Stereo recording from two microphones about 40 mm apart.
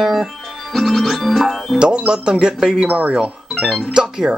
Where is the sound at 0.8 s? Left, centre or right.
Centre.